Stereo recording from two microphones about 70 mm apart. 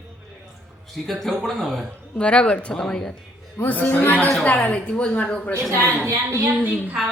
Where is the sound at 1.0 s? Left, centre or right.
Centre.